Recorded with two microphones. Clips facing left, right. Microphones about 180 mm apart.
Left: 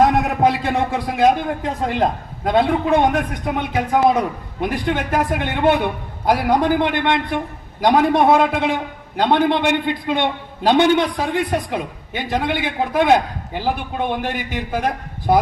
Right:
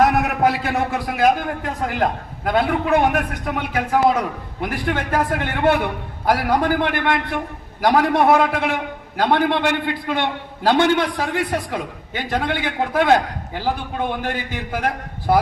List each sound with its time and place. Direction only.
0.0 s a man's voice: 20° left (ahead or behind)